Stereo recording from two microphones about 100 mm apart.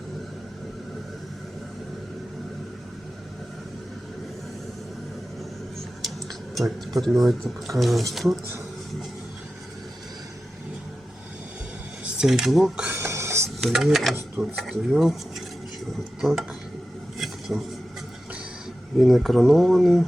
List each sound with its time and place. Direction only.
6.5 s speech: centre (ahead or behind)
12.0 s speech: 10° right (ahead or behind)
12.8 s a sound: 20° right (ahead or behind)
13.6 s speech: centre (ahead or behind)
17.5 s speech: 5° right (ahead or behind)
18.9 s speech: centre (ahead or behind)